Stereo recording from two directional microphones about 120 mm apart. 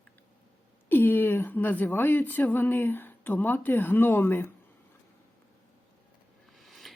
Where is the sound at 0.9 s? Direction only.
15° left (ahead or behind).